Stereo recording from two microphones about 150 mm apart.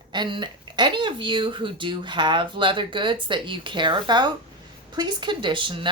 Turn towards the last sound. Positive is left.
turn(degrees=-35)  # may be behind; listen again after turning